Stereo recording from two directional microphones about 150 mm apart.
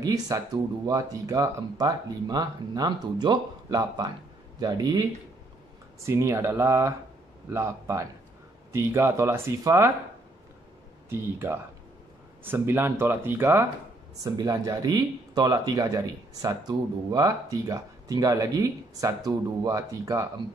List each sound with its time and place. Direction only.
0.0 s speech: 25° right (ahead or behind)
6.0 s speech: 20° right (ahead or behind)
11.1 s speech: 15° right (ahead or behind)